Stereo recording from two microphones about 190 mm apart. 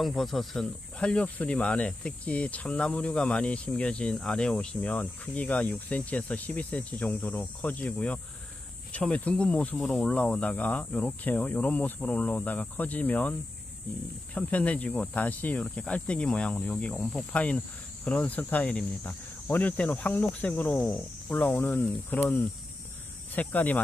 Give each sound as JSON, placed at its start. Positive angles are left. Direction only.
{"t": 0.0, "sound": "speech", "side_deg": 0}